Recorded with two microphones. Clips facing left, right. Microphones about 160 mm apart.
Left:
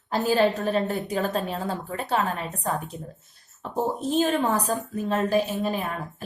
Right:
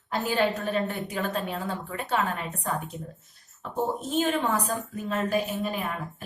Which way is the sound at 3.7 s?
35° left (ahead or behind).